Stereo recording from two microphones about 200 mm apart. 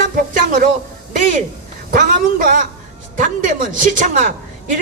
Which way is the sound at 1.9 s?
45° right (ahead or behind).